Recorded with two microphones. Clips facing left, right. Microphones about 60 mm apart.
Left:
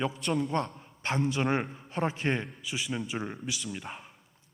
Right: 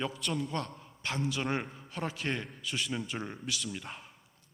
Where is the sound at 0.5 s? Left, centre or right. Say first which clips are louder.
Left 6 dB; left.